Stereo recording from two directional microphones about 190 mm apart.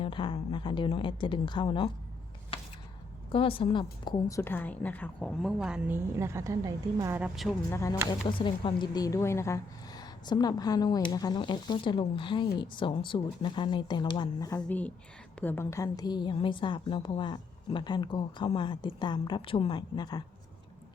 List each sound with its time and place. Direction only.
0.0 s a woman's voice: 25° left (ahead or behind)
2.5 s a sound: 30° left (ahead or behind)
3.3 s a woman's voice: 30° left (ahead or behind); by 6.0 s 5° right (ahead or behind)
6.1 s a woman's voice: 15° right (ahead or behind)
7.7 s a woman's voice: 15° left (ahead or behind)
8.3 s a woman's voice: 25° left (ahead or behind)
14.7 s a woman's voice: 10° left (ahead or behind)